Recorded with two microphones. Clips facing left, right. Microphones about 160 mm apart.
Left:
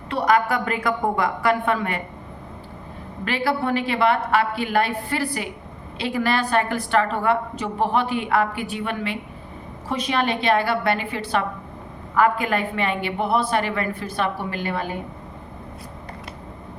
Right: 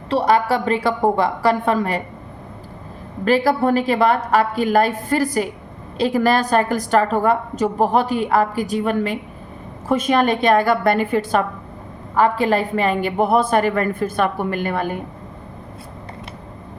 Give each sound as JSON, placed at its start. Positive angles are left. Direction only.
{"t": 0.1, "sound": "a woman's voice", "side_deg": -30}
{"t": 3.2, "sound": "a woman's voice", "side_deg": -40}
{"t": 12.1, "sound": "a woman's voice", "side_deg": -35}